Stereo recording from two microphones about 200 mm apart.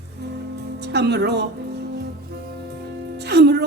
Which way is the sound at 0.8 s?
55° right (ahead or behind).